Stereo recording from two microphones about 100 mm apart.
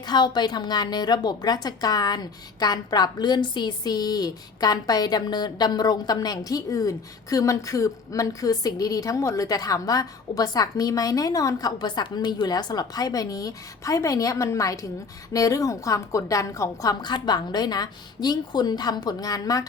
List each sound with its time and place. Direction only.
0.0 s a woman's voice: 45° left (ahead or behind)